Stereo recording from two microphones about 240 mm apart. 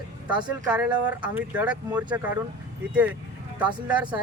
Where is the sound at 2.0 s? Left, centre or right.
Centre.